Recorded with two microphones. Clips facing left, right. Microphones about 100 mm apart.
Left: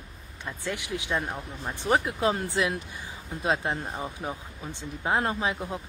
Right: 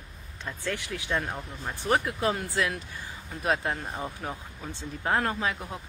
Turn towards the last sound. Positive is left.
turn(degrees=20)  # may be behind; listen again after turning